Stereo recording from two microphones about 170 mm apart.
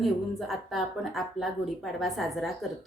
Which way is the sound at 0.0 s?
Centre (ahead or behind).